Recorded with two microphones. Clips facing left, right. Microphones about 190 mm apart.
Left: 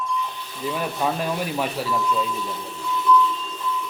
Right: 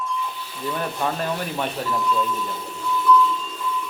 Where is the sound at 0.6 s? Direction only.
5° left (ahead or behind).